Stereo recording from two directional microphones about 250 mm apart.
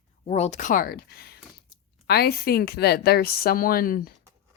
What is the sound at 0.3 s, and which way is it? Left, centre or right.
Speech, left.